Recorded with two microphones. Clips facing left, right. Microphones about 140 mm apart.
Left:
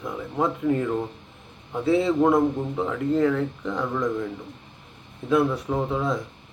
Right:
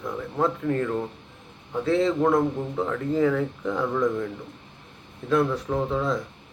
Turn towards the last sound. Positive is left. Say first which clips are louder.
# even
turn(degrees=5)  # may be behind; listen again after turning